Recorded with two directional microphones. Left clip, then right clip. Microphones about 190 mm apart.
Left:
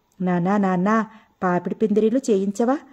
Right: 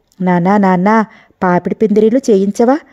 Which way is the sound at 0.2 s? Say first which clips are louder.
Right 10 dB; 40° right (ahead or behind).